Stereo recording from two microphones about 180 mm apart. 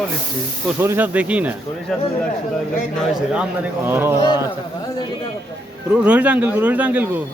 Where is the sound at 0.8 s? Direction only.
10° right (ahead or behind).